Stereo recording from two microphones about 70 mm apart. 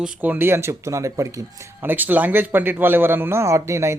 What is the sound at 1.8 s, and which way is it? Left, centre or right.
A man's voice, right.